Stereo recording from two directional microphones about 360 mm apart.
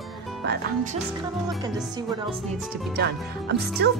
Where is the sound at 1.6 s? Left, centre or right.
Centre.